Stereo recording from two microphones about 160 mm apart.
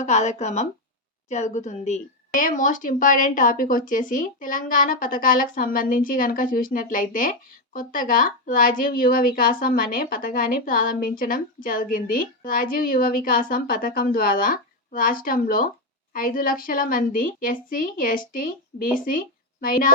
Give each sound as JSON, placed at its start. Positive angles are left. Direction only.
{"t": 0.0, "sound": "speech", "side_deg": 45}